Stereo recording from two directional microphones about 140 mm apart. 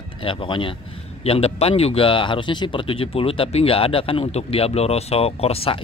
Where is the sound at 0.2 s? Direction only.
35° left (ahead or behind).